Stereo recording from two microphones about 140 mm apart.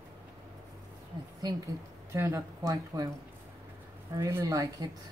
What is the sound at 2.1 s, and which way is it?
Speech, 20° right (ahead or behind).